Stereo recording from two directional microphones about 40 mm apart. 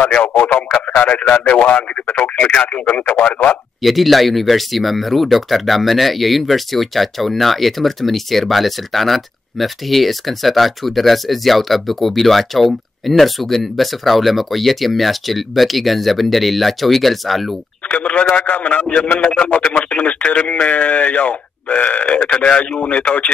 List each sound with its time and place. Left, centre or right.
0.1 s speech: left
0.4 s a man's voice: left
1.5 s a man's voice: left
2.1 s a man's voice: left
3.8 s speech: centre
17.9 s a man's voice: left